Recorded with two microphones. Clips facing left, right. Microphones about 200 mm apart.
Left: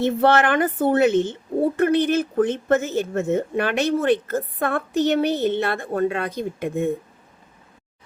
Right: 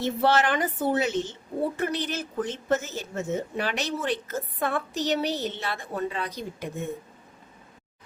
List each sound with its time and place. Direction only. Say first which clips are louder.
0.0 s a woman's voice: left 5 dB; 55° left (ahead or behind)